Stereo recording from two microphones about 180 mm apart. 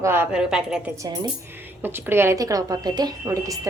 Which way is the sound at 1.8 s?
10° right (ahead or behind).